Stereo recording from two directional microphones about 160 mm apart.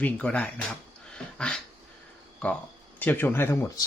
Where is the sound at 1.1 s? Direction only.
5° left (ahead or behind).